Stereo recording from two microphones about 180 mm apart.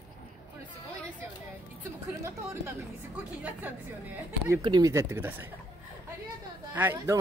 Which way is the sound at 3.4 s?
10° right (ahead or behind).